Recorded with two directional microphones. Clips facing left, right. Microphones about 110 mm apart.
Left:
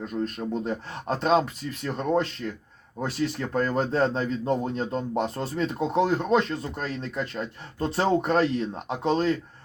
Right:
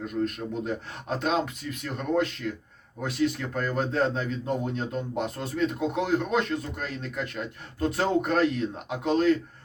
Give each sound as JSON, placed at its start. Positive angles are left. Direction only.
{"t": 0.0, "sound": "a man's voice", "side_deg": 35}